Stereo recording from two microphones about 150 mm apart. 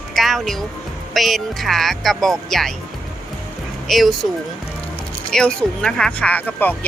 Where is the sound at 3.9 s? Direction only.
Centre (ahead or behind).